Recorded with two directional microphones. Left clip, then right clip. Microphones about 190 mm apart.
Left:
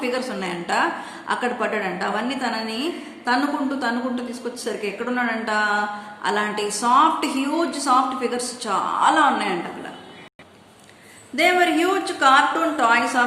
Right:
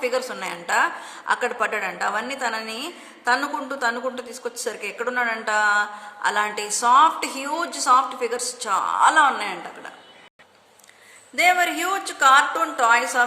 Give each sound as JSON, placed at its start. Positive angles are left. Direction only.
{"t": 0.0, "sound": "a woman's voice", "side_deg": -45}
{"t": 11.3, "sound": "a woman's voice", "side_deg": -40}